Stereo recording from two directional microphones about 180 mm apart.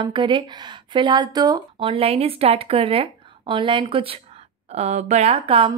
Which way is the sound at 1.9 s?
35° right (ahead or behind).